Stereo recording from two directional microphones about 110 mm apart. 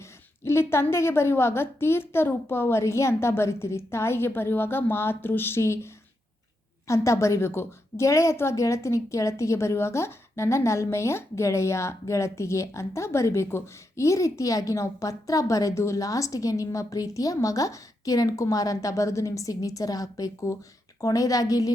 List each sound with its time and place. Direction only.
0.4 s a woman's voice: 25° left (ahead or behind)